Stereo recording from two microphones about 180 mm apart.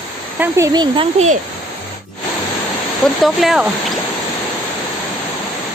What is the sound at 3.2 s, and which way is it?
Speech, centre (ahead or behind).